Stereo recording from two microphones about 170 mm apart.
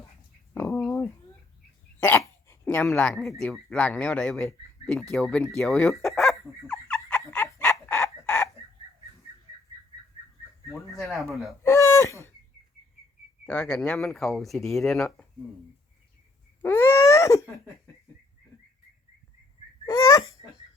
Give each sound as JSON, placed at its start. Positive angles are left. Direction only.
{"t": 0.5, "sound": "a sound", "side_deg": 10}
{"t": 2.0, "sound": "dog", "side_deg": 15}
{"t": 3.4, "sound": "speech", "side_deg": 5}
{"t": 6.7, "sound": "laughter", "side_deg": 5}
{"t": 7.6, "sound": "chicken", "side_deg": 15}
{"t": 10.7, "sound": "a sound", "side_deg": 15}
{"t": 11.0, "sound": "speech", "side_deg": 0}
{"t": 11.6, "sound": "speech", "side_deg": 15}
{"t": 13.4, "sound": "speech", "side_deg": 5}
{"t": 16.6, "sound": "a sound", "side_deg": 15}
{"t": 20.0, "sound": "babbling", "side_deg": 20}